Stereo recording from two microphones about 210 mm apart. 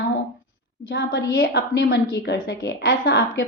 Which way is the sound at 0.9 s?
50° left (ahead or behind).